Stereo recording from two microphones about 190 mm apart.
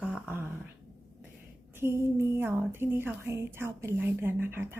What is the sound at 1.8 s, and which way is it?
Speech, 15° right (ahead or behind).